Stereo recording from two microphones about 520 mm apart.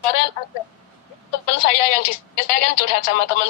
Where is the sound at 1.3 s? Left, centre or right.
Left.